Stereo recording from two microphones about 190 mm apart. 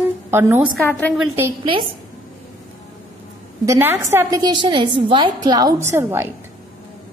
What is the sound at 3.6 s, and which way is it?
A woman's voice, 15° right (ahead or behind).